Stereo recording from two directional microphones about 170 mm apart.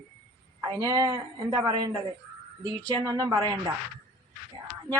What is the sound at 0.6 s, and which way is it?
A woman's voice, 20° right (ahead or behind).